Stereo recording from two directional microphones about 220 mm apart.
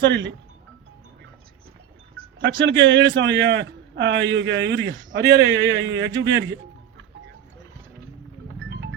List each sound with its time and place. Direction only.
0.0 s speech: 55° right (ahead or behind)
2.4 s a man's voice: 55° right (ahead or behind)
8.5 s music: 50° right (ahead or behind)